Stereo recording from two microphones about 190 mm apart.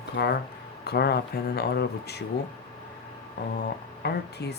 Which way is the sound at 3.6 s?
60° left (ahead or behind).